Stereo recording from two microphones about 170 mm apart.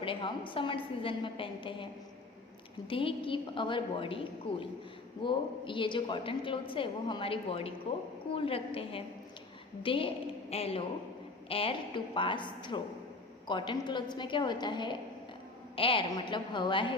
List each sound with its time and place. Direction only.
0.0 s a woman's voice: 30° left (ahead or behind)